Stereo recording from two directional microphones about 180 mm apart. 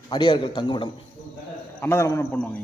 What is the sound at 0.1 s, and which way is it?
Speech, 25° left (ahead or behind).